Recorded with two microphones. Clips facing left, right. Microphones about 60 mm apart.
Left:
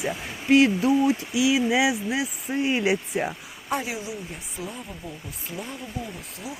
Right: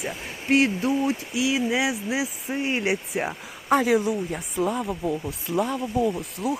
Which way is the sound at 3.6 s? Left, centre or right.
Right.